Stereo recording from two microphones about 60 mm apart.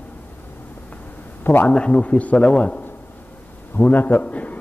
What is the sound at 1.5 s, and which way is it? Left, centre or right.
A man's voice, left.